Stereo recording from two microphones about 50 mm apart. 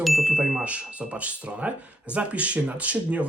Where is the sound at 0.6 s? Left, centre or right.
Right.